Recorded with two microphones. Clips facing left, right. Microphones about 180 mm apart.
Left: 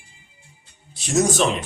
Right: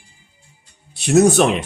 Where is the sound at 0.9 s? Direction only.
65° right (ahead or behind).